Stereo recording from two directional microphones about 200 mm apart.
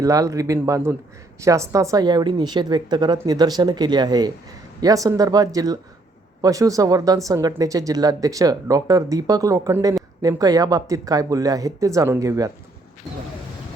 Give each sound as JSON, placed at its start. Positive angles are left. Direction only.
{"t": 0.0, "sound": "a woman's voice", "side_deg": -15}